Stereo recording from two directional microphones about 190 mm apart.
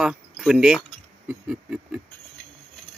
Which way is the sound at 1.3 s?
5° right (ahead or behind).